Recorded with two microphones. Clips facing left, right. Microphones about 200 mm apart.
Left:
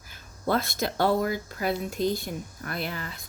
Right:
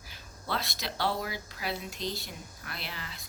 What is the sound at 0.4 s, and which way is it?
Speech, 50° left (ahead or behind).